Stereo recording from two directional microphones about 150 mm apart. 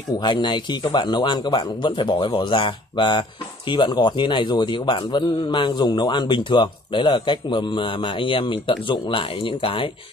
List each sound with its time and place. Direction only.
0.2 s a man's voice: 30° left (ahead or behind)